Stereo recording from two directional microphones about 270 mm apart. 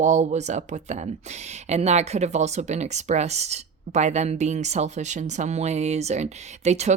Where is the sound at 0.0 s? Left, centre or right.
Right.